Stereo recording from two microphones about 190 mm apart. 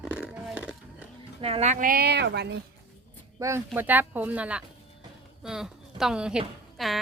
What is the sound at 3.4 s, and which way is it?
A woman's voice, 15° right (ahead or behind).